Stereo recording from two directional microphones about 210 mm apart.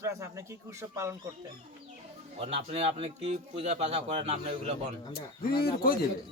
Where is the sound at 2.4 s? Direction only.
30° right (ahead or behind).